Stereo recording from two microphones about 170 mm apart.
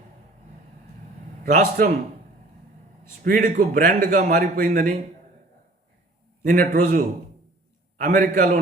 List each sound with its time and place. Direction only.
1.5 s a man's voice: 60° right (ahead or behind)
3.2 s a man's voice: 50° right (ahead or behind)
6.4 s a man's voice: 50° right (ahead or behind)